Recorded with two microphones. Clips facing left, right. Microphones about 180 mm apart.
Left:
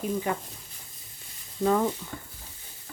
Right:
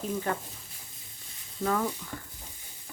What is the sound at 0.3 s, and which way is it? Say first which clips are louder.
Speech: right 1 dB; 15° left (ahead or behind).